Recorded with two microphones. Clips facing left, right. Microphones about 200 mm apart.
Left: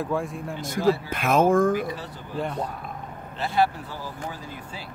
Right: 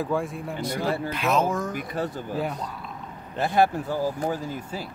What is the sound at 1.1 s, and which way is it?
Speech, 50° left (ahead or behind).